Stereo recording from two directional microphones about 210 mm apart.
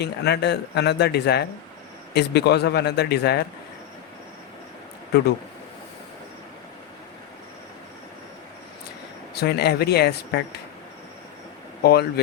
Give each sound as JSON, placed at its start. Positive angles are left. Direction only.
{"t": 0.0, "sound": "speech", "side_deg": 50}
{"t": 9.3, "sound": "speech", "side_deg": 50}
{"t": 11.8, "sound": "speech", "side_deg": 50}